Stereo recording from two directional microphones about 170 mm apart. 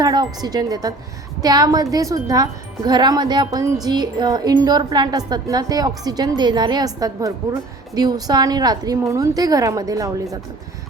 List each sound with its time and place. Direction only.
0.0 s a woman's voice: 20° right (ahead or behind)